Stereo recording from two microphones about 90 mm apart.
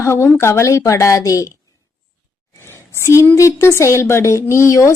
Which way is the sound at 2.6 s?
30° left (ahead or behind).